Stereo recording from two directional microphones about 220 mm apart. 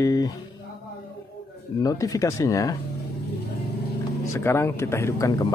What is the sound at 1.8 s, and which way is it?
Speech, 15° left (ahead or behind).